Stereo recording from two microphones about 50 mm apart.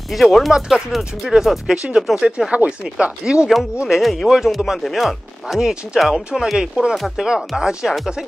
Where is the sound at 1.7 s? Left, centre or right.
Centre.